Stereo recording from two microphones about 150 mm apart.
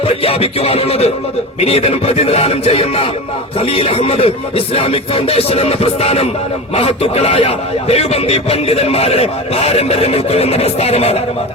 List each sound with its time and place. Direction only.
0.2 s speech: 40° left (ahead or behind)